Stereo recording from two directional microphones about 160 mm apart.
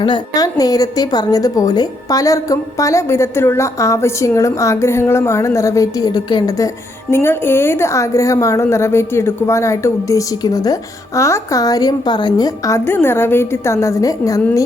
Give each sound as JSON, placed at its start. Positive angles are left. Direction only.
{"t": 0.0, "sound": "a woman's voice", "side_deg": 25}
{"t": 7.1, "sound": "a woman's voice", "side_deg": 15}